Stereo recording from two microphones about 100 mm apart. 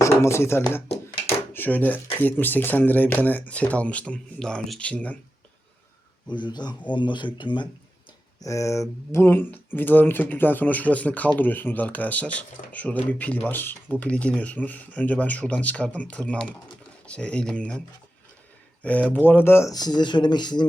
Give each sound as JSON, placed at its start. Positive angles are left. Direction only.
{"t": 0.0, "sound": "speech", "side_deg": 30}
{"t": 6.3, "sound": "speech", "side_deg": 50}
{"t": 8.4, "sound": "speech", "side_deg": 30}
{"t": 19.7, "sound": "speech", "side_deg": 45}